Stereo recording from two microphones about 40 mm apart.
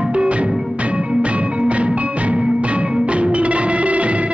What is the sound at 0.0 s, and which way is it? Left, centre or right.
Music, right.